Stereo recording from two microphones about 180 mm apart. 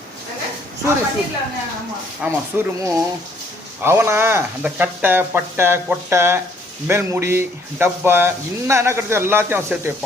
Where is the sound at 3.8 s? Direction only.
15° right (ahead or behind).